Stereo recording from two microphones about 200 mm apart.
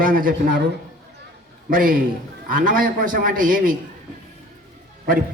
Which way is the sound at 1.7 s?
45° right (ahead or behind).